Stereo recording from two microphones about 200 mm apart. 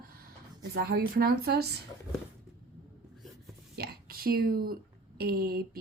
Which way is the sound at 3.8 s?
50° right (ahead or behind).